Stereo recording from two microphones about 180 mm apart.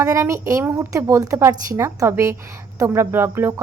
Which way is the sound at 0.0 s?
15° right (ahead or behind).